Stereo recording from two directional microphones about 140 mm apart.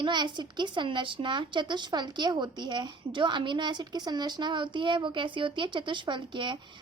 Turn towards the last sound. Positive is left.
turn(degrees=-35)  # may be behind; listen again after turning